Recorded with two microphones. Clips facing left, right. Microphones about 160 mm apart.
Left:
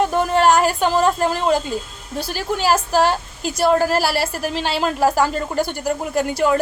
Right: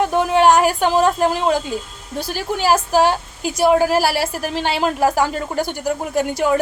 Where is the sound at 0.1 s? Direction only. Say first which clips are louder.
Right 2 dB; 15° right (ahead or behind).